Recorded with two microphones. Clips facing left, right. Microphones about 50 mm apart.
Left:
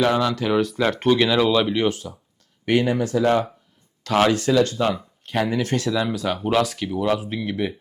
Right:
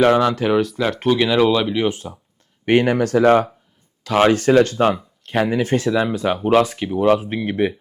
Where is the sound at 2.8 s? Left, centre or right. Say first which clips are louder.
Right 5 dB; right.